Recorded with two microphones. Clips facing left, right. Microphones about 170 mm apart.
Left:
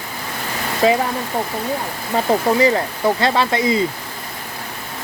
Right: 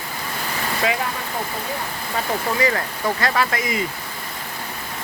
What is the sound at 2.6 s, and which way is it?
Speech, 25° left (ahead or behind).